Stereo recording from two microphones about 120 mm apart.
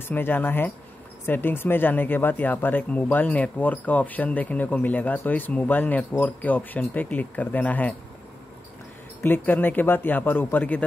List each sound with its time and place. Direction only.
0.1 s speech: 15° left (ahead or behind)
9.2 s speech: 15° left (ahead or behind)